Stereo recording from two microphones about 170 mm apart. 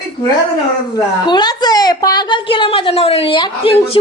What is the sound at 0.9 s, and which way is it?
A woman's voice, 25° left (ahead or behind).